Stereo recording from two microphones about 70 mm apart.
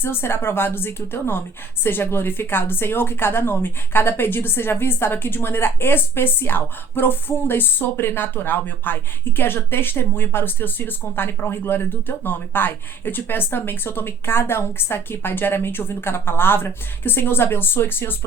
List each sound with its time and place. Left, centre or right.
0.0 s a woman's voice: left